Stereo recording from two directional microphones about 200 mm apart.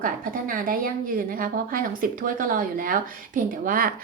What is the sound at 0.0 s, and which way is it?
Speech, 45° right (ahead or behind).